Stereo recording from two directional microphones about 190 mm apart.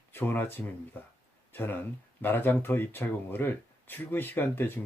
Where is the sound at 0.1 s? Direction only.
10° left (ahead or behind).